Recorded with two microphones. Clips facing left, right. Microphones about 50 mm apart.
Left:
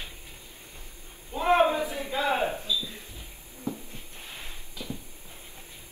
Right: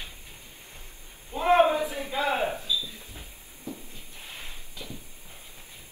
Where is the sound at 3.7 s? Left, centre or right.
Left.